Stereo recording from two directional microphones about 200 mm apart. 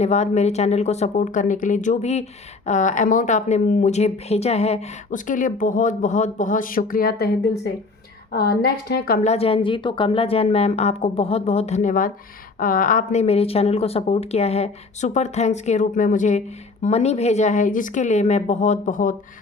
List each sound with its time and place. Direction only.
0.0 s a woman's voice: 35° left (ahead or behind)
9.3 s a woman's voice: 30° left (ahead or behind)